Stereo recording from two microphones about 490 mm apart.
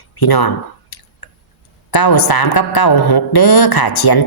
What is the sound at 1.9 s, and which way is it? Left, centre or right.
A woman's voice, left.